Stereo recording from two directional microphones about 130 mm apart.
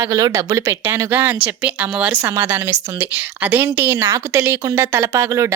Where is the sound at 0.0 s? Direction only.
25° right (ahead or behind).